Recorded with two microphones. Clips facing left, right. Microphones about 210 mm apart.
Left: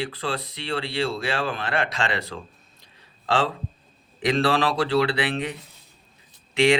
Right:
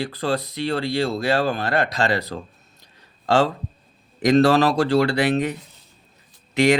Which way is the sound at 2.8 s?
45° right (ahead or behind).